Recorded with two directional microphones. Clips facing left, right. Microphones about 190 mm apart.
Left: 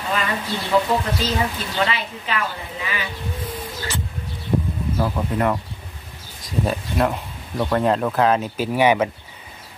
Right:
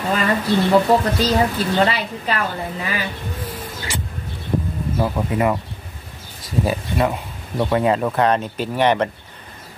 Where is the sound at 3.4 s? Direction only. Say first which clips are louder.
Left 1 dB; 10° right (ahead or behind).